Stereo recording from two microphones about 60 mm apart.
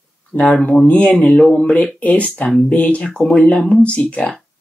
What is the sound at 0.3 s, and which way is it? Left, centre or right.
Speech, left.